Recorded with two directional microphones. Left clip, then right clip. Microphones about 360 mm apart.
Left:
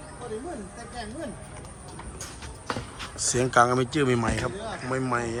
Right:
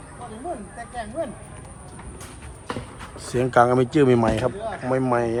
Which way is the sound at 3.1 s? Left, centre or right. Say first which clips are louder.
Right 3 dB; centre.